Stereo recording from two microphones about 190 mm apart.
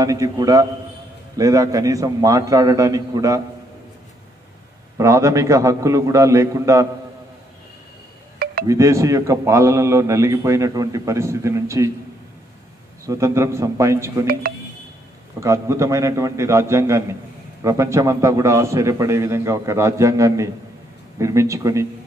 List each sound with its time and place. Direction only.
0.0 s a man's voice: 20° right (ahead or behind)
4.9 s a man's voice: 15° right (ahead or behind)
8.6 s a man's voice: 15° right (ahead or behind)
13.0 s a man's voice: 15° right (ahead or behind)
15.4 s a man's voice: 15° right (ahead or behind)